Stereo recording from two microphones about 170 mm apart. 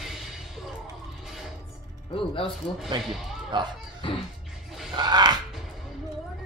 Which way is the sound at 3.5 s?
25° right (ahead or behind).